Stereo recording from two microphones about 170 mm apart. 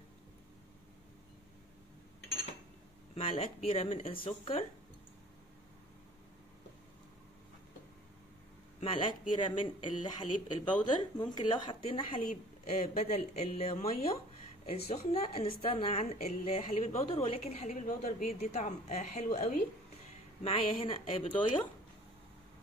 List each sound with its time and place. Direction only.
3.2 s a woman's voice: 35° left (ahead or behind)
8.7 s speech: 30° left (ahead or behind)
12.6 s a woman's voice: 45° left (ahead or behind)